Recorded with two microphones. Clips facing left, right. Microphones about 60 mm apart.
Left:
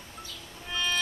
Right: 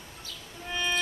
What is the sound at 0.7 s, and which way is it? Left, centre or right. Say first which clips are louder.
Music: right 1 dB; centre.